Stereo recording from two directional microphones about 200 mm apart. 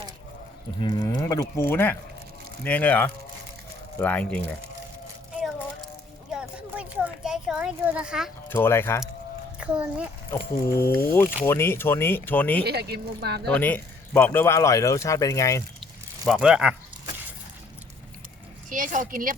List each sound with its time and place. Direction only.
0.8 s speech: 25° left (ahead or behind); by 4.4 s 5° left (ahead or behind)
6.3 s a sound: 5° right (ahead or behind)
8.4 s speech: 10° left (ahead or behind)
9.7 s a child's voice: 10° right (ahead or behind)
10.8 s speech: 10° left (ahead or behind)
12.6 s speech: 55° right (ahead or behind)
13.5 s speech: 10° left (ahead or behind)
16.2 s speech: 5° right (ahead or behind)
18.7 s a woman's voice: 40° right (ahead or behind)